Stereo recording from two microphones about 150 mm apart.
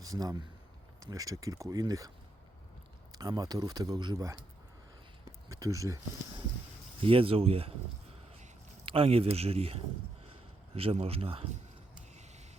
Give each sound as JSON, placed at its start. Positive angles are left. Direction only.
{"t": 0.0, "sound": "speech", "side_deg": -25}
{"t": 5.5, "sound": "speech", "side_deg": -20}
{"t": 7.0, "sound": "a man's voice", "side_deg": -35}